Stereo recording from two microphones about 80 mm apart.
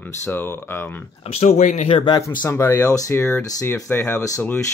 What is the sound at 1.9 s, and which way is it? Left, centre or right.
Speech, left.